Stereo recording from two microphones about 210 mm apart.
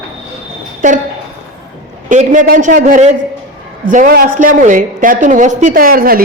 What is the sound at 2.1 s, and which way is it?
A man's voice, 40° right (ahead or behind).